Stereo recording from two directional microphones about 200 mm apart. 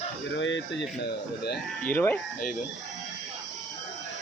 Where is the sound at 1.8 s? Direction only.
10° left (ahead or behind).